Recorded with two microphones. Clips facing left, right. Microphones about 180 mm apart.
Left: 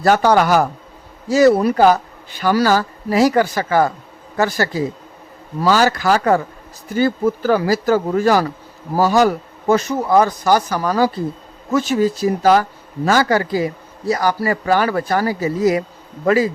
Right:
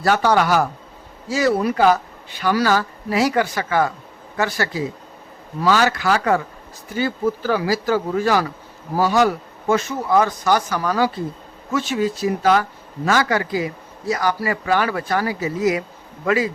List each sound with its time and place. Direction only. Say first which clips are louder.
0.0 s speech: left 3 dB; 45° left (ahead or behind)